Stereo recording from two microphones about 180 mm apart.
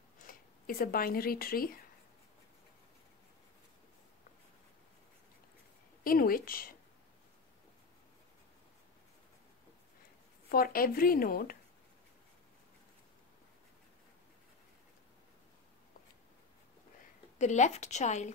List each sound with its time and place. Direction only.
0.3 s speech: 55° left (ahead or behind)
6.0 s a woman's voice: 55° left (ahead or behind)
10.5 s speech: 55° left (ahead or behind)
17.4 s speech: 40° left (ahead or behind)